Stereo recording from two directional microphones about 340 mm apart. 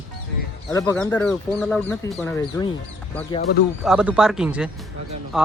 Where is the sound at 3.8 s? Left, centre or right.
Centre.